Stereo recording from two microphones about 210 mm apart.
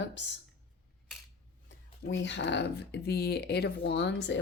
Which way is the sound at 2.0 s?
60° left (ahead or behind).